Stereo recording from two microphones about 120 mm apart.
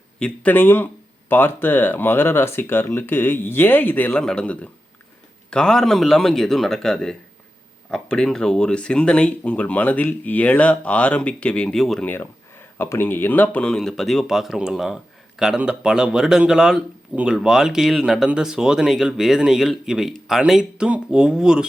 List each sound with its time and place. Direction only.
0.2 s a man's voice: 15° left (ahead or behind)
12.0 s a man's voice: 20° left (ahead or behind); by 21.7 s 5° right (ahead or behind)